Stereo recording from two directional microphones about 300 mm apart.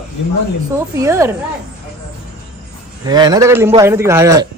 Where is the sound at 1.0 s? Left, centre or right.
Centre.